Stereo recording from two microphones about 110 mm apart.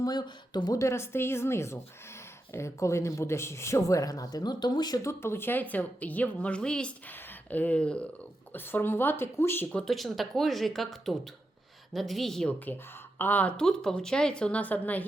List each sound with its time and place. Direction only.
0.0 s speech: 40° left (ahead or behind)
5.2 s a woman's voice: 20° left (ahead or behind)
9.7 s speech: centre (ahead or behind)
13.1 s a woman's voice: 15° left (ahead or behind)